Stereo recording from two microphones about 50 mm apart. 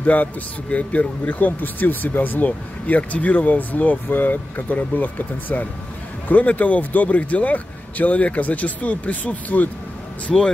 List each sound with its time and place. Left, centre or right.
0.0 s speech: left
10.3 s speech: centre